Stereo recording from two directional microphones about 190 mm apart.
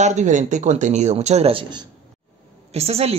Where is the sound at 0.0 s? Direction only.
40° right (ahead or behind).